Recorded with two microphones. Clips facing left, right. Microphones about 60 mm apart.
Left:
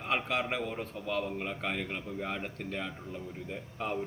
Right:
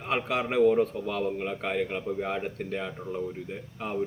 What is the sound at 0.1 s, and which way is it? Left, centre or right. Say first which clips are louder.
A man's voice: right 4 dB; centre.